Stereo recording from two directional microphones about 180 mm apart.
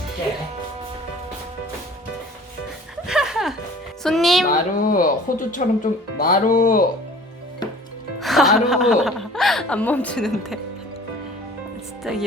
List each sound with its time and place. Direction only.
3.1 s music: 5° right (ahead or behind)
4.0 s speech: centre (ahead or behind)
4.5 s speech: 50° left (ahead or behind)
8.2 s a woman's voice: centre (ahead or behind)
12.1 s speech: centre (ahead or behind)